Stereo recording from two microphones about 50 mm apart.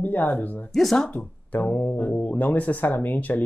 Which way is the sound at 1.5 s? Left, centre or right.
Left.